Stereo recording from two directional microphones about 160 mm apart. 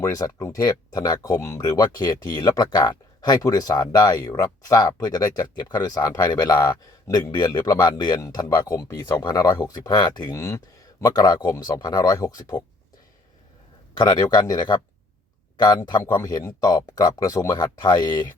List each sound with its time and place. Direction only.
0.0 s speech: 20° left (ahead or behind)
13.9 s speech: 25° left (ahead or behind)